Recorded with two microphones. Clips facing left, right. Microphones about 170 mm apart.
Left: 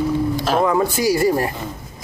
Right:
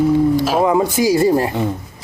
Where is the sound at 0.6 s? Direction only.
20° right (ahead or behind).